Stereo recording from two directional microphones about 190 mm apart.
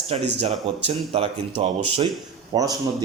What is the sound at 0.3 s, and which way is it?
Speech, 30° right (ahead or behind).